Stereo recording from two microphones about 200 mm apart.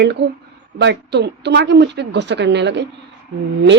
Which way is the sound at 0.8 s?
60° right (ahead or behind).